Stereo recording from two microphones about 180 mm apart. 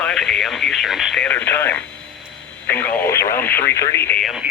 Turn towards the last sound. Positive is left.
turn(degrees=0)  # may be behind; listen again after turning